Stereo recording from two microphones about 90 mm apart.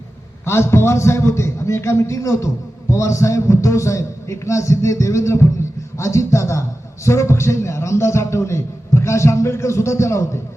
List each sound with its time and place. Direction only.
0.4 s a man's voice: 30° left (ahead or behind)